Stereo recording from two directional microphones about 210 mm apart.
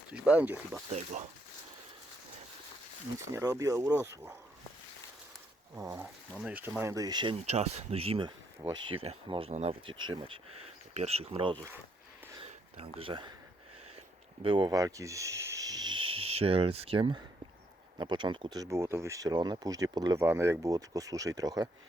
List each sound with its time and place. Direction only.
0.1 s speech: 5° right (ahead or behind)
3.3 s speech: 15° right (ahead or behind)
5.7 s speech: 15° right (ahead or behind)
12.7 s speech: 25° right (ahead or behind)
14.4 s speech: 25° right (ahead or behind)